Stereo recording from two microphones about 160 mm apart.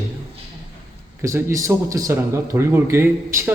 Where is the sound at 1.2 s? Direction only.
15° right (ahead or behind).